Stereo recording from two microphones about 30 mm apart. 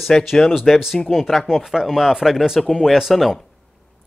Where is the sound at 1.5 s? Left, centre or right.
Centre.